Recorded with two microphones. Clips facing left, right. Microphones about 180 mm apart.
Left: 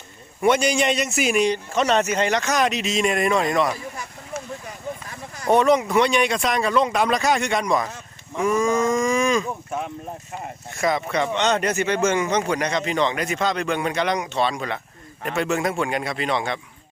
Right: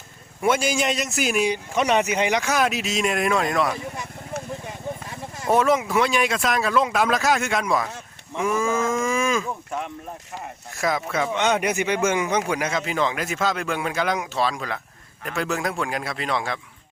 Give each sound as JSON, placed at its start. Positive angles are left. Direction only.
{"t": 0.4, "sound": "speech", "side_deg": -5}
{"t": 4.6, "sound": "a sound", "side_deg": -25}
{"t": 5.5, "sound": "speech", "side_deg": -5}
{"t": 8.4, "sound": "cattle", "side_deg": -5}
{"t": 10.7, "sound": "speech", "side_deg": 0}